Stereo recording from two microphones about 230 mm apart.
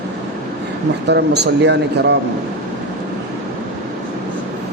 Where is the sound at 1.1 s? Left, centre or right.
Right.